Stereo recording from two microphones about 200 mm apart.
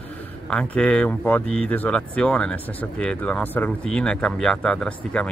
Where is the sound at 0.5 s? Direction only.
5° left (ahead or behind).